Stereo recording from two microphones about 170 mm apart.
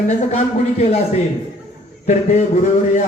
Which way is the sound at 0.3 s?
40° left (ahead or behind).